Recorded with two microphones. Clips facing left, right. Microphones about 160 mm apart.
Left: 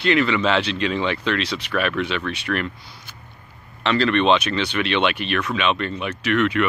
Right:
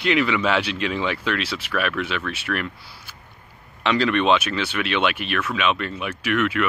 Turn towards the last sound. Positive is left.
turn(degrees=-5)  # may be behind; listen again after turning